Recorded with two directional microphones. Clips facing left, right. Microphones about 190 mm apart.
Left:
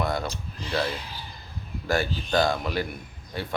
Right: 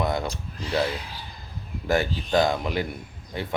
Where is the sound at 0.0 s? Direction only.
20° right (ahead or behind).